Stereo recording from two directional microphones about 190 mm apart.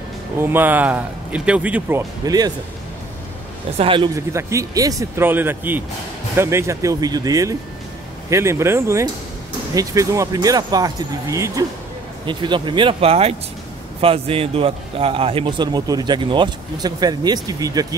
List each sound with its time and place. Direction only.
0.4 s speech: 10° right (ahead or behind)
3.7 s a man's voice: 30° right (ahead or behind)